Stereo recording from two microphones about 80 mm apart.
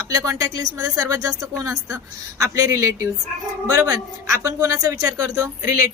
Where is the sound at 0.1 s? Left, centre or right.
Right.